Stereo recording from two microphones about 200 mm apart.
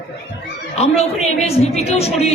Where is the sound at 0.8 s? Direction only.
30° left (ahead or behind).